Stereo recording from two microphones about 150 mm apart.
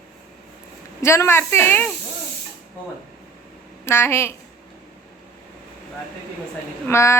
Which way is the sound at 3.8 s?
15° left (ahead or behind).